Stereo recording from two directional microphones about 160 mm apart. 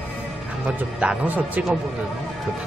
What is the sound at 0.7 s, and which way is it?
Speech, 5° right (ahead or behind).